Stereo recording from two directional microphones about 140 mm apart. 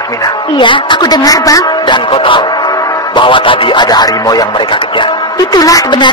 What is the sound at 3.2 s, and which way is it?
Speech, 35° left (ahead or behind).